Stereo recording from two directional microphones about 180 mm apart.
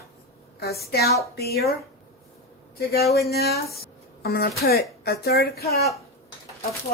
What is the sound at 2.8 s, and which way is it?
Speech, 60° left (ahead or behind).